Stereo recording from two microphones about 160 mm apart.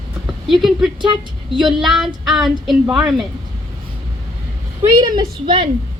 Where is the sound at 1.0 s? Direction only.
30° right (ahead or behind).